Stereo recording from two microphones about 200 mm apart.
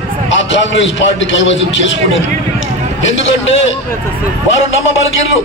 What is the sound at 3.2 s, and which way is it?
Speech, 70° left (ahead or behind).